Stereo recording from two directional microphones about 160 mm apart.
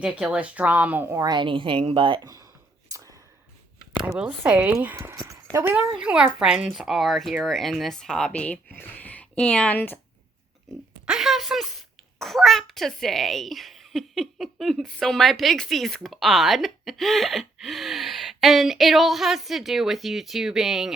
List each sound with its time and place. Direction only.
0.0 s a woman's voice: 5° right (ahead or behind); by 2.5 s 20° right (ahead or behind)
2.9 s whispering: 20° right (ahead or behind)
4.0 s speech: 5° right (ahead or behind); by 10.0 s 10° left (ahead or behind)
11.0 s speech: 5° right (ahead or behind)